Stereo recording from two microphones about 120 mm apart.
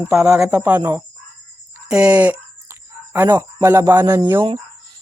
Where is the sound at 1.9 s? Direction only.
10° right (ahead or behind).